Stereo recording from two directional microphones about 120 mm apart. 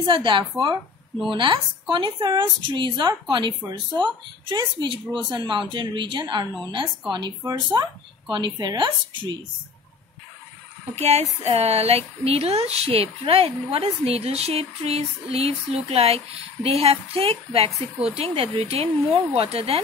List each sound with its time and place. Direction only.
0.0 s speech: 45° right (ahead or behind)
11.0 s a woman's voice: 65° right (ahead or behind)